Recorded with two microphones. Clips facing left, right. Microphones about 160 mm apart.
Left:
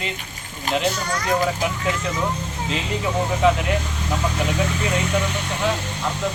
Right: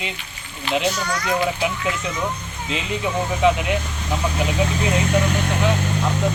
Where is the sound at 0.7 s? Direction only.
45° left (ahead or behind).